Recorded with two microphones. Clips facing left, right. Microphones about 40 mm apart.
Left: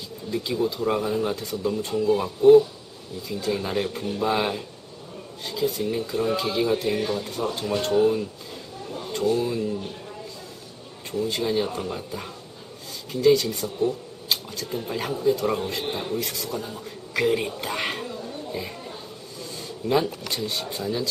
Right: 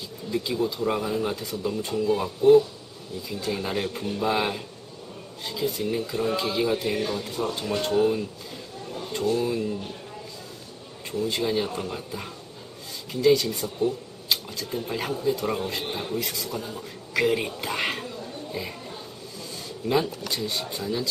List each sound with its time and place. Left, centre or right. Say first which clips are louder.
0.5 s speech: left 2 dB; centre
1.3 s speech: left 2 dB; centre
1.9 s speech: left 2 dB; centre
5.8 s speech: left 1 dB; centre
11.1 s a man's voice: left 1 dB; centre